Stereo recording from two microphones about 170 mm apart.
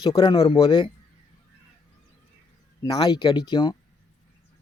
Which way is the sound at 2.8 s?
25° left (ahead or behind).